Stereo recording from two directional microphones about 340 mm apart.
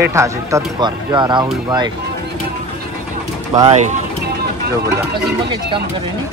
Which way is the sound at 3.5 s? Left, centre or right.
Centre.